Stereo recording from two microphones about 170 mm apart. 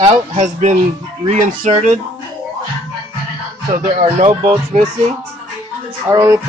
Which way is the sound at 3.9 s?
40° right (ahead or behind).